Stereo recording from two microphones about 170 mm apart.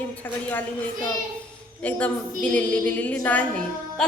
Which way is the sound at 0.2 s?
10° left (ahead or behind).